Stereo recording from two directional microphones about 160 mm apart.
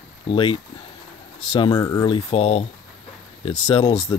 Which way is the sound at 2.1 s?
35° left (ahead or behind).